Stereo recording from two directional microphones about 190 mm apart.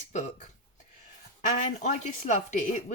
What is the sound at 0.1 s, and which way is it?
Speech, 40° left (ahead or behind).